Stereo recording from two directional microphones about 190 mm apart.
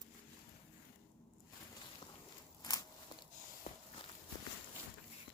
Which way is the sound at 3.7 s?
35° left (ahead or behind).